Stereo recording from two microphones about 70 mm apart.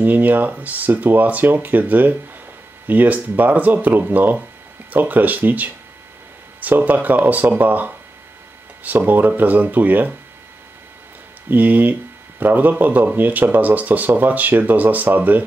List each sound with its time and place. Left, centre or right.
0.0 s speech: right
11.5 s speech: right